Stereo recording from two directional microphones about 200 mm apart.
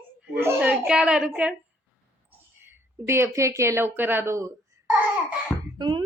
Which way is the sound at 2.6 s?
10° right (ahead or behind).